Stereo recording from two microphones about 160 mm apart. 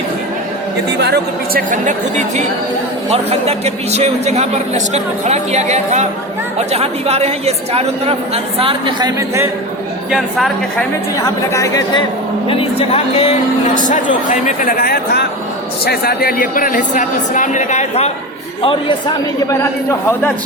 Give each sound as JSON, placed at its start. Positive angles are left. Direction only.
{"t": 1.0, "sound": "speech", "side_deg": -90}
{"t": 1.7, "sound": "a man's voice", "side_deg": -50}
{"t": 3.1, "sound": "a man's voice", "side_deg": -40}
{"t": 10.1, "sound": "a woman's voice", "side_deg": 0}
{"t": 11.5, "sound": "a woman's voice", "side_deg": 20}
{"t": 12.5, "sound": "speech", "side_deg": 35}
{"t": 13.7, "sound": "speech", "side_deg": 50}
{"t": 18.6, "sound": "speech", "side_deg": 30}
{"t": 19.5, "sound": "a man's voice", "side_deg": 15}